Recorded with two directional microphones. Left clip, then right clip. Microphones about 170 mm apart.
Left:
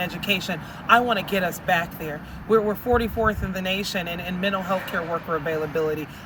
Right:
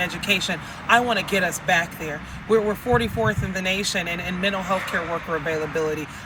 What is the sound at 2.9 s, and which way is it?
Speech, centre (ahead or behind).